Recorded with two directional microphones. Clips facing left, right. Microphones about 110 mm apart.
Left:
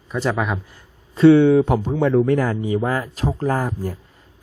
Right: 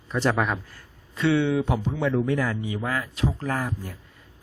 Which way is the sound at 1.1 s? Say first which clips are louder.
Left 11 dB; 35° left (ahead or behind).